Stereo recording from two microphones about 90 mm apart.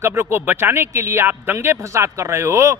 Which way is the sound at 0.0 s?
30° right (ahead or behind).